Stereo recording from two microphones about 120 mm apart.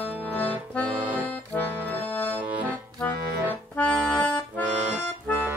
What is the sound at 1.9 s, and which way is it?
Accordion, 15° left (ahead or behind).